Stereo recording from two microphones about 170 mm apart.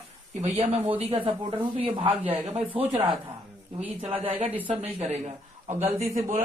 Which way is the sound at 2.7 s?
30° right (ahead or behind).